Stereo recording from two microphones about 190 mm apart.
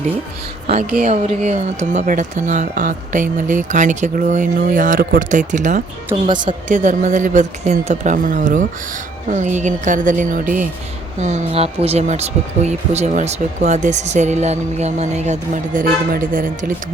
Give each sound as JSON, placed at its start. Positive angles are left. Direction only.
{"t": 0.9, "sound": "speech", "side_deg": -45}
{"t": 6.2, "sound": "a woman's voice", "side_deg": -25}
{"t": 6.7, "sound": "speech", "side_deg": -45}